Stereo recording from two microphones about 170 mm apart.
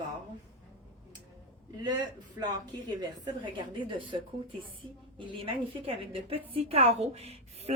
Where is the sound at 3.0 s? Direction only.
30° right (ahead or behind).